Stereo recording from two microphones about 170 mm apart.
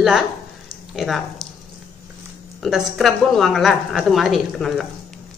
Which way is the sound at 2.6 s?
Centre (ahead or behind).